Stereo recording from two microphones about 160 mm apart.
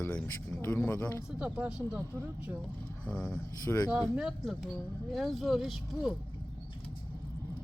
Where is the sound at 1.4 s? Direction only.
10° right (ahead or behind).